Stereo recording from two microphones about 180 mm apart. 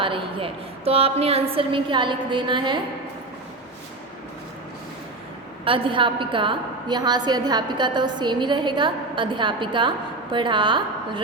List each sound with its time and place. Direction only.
0.0 s a woman's voice: 30° right (ahead or behind)
5.6 s a woman's voice: 30° right (ahead or behind)